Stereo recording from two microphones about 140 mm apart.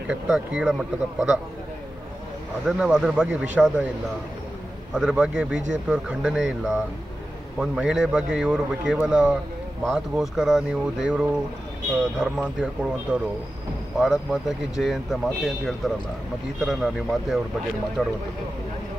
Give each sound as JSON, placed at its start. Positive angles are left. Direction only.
{"t": 0.1, "sound": "speech", "side_deg": -5}
{"t": 2.6, "sound": "speech", "side_deg": -5}
{"t": 4.9, "sound": "speech", "side_deg": -5}
{"t": 14.0, "sound": "speech", "side_deg": -5}